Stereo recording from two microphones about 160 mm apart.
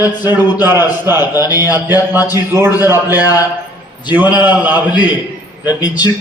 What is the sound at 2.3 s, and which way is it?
A man's voice, 15° right (ahead or behind).